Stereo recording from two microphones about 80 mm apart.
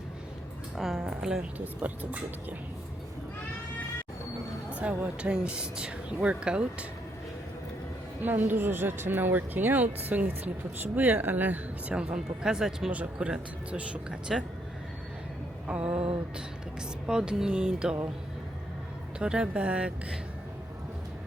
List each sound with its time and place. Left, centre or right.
0.8 s speech: centre
4.8 s speech: centre
8.2 s speech: right; by 14.4 s centre
15.6 s speech: centre
17.1 s speech: centre
19.2 s speech: centre